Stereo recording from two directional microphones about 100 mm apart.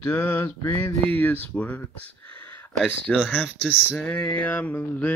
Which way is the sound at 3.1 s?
10° left (ahead or behind).